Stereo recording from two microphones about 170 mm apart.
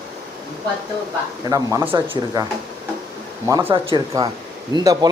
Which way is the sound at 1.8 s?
30° right (ahead or behind).